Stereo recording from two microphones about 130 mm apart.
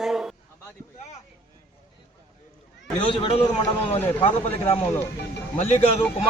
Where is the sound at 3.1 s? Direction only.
40° left (ahead or behind).